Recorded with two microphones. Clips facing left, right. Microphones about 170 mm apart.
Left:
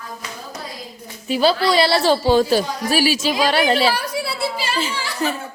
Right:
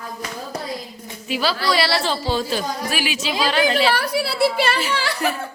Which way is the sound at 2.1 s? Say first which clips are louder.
Left 7 dB; 50° left (ahead or behind).